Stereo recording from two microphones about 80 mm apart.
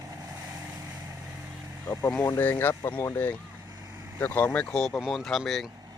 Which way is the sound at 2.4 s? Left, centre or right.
Left.